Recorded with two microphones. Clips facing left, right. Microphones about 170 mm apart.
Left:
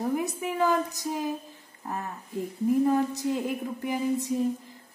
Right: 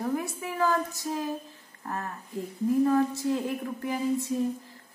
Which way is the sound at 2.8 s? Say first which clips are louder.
Right 3 dB; 15° left (ahead or behind).